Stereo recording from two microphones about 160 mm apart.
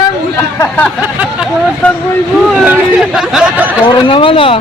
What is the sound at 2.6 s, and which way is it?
Speech, 5° right (ahead or behind).